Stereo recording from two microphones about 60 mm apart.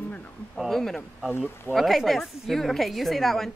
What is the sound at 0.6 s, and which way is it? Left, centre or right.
Speech, centre.